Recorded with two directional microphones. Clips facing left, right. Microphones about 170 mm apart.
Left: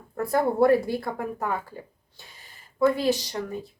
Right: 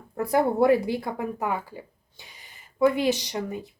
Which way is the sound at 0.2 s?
15° right (ahead or behind).